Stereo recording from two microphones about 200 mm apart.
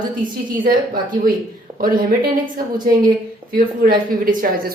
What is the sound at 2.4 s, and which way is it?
Speech, 20° right (ahead or behind).